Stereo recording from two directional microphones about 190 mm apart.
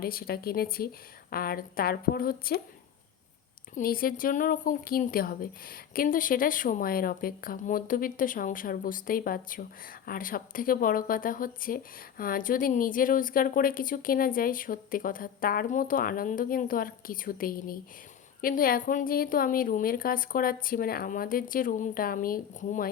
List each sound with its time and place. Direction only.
0.0 s speech: 50° left (ahead or behind)
3.8 s speech: 50° left (ahead or behind)